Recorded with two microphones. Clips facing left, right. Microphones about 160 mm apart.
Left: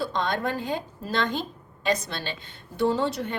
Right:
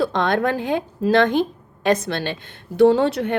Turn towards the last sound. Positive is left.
turn(degrees=-65)  # may be behind; listen again after turning